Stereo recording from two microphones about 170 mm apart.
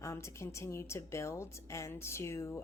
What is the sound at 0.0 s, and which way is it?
A woman's voice, 15° left (ahead or behind).